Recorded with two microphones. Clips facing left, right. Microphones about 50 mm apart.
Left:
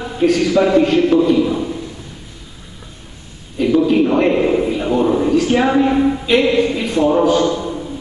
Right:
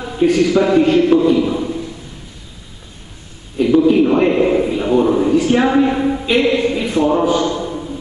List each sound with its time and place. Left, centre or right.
0.2 s a man's voice: centre
0.6 s a man's voice: centre
3.5 s a sound: centre
7.2 s a man's voice: centre